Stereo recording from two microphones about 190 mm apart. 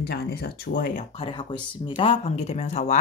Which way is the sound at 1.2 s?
25° left (ahead or behind).